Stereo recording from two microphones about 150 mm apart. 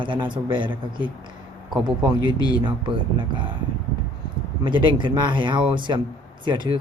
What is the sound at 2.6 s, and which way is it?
Speech, 35° right (ahead or behind).